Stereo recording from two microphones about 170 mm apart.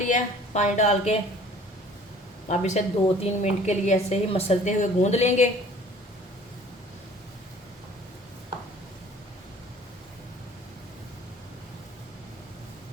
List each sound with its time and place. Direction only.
0.0 s speech: 45° left (ahead or behind)
2.5 s a woman's voice: 45° left (ahead or behind)